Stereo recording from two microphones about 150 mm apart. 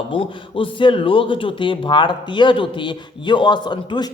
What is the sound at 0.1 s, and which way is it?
A man's voice, 35° left (ahead or behind).